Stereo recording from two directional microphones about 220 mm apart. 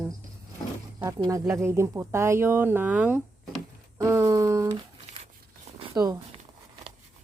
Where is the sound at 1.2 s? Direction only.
15° right (ahead or behind).